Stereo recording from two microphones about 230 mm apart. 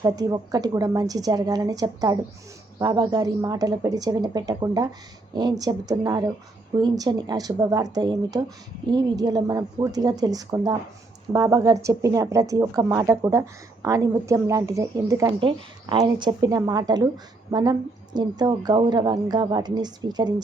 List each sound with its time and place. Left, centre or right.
0.0 s speech: centre